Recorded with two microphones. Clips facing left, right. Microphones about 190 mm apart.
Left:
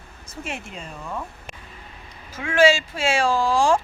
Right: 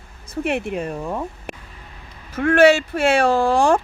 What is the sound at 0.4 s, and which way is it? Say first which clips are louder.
Speech: right 12 dB; 60° right (ahead or behind).